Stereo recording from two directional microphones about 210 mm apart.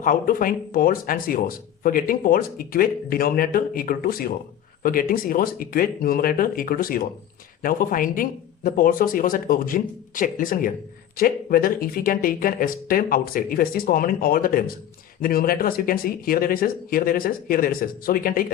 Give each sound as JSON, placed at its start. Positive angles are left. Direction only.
{"t": 0.0, "sound": "speech", "side_deg": 40}